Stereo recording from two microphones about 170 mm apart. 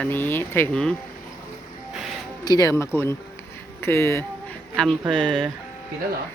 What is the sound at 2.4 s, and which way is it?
Speech, 20° left (ahead or behind).